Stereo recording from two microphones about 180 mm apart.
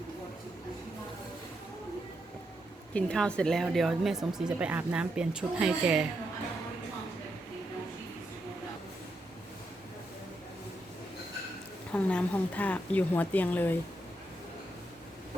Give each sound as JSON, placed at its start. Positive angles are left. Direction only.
{"t": 2.9, "sound": "speech", "side_deg": 5}
{"t": 11.9, "sound": "speech", "side_deg": 5}